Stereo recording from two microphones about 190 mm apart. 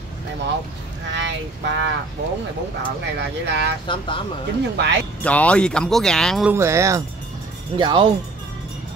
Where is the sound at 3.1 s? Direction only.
65° right (ahead or behind).